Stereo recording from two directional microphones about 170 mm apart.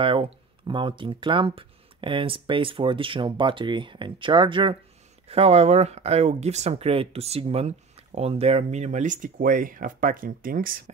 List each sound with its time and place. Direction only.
0.0 s speech: 30° right (ahead or behind); by 10.7 s 55° right (ahead or behind)